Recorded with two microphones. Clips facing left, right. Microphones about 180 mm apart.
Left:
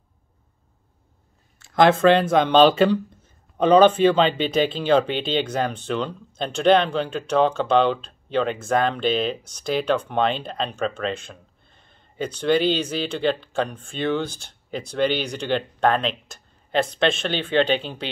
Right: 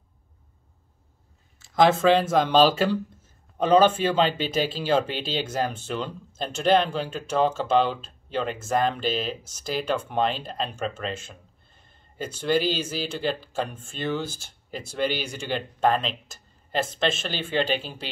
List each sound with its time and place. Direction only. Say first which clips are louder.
1.6 s speech: left 3 dB; centre (ahead or behind)